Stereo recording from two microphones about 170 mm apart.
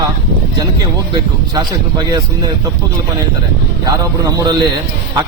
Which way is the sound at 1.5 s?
25° right (ahead or behind).